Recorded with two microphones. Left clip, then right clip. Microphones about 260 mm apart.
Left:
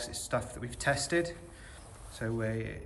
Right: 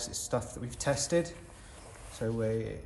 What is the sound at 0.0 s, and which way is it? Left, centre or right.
A man's voice, centre.